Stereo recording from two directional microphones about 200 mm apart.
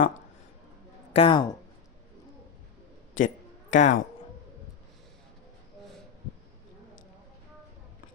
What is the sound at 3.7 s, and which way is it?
Speech, 40° left (ahead or behind).